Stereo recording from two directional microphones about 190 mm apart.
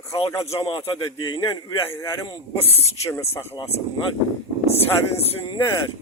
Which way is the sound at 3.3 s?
15° left (ahead or behind).